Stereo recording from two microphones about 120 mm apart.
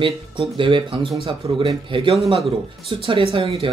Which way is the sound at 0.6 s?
45° right (ahead or behind).